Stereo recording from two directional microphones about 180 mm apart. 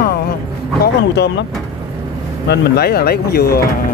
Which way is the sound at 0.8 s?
65° left (ahead or behind).